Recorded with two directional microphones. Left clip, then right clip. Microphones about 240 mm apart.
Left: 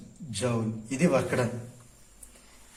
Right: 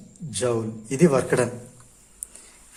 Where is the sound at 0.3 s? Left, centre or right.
Right.